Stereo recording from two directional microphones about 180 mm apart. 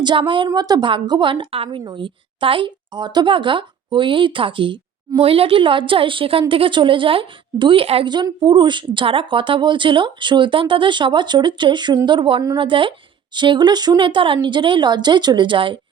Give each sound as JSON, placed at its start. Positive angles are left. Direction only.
{"t": 0.0, "sound": "a woman's voice", "side_deg": -25}